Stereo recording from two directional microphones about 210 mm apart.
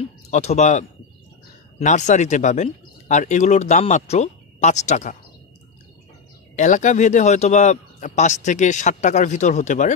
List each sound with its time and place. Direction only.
0.3 s speech: 30° left (ahead or behind)
6.5 s speech: 35° left (ahead or behind)